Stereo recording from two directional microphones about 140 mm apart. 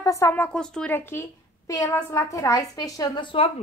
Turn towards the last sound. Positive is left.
turn(degrees=40)  # may be behind; listen again after turning